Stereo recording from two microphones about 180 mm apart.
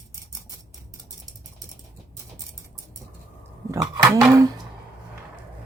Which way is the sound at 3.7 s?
15° right (ahead or behind).